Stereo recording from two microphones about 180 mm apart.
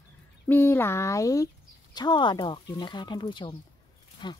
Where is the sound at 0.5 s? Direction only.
10° left (ahead or behind).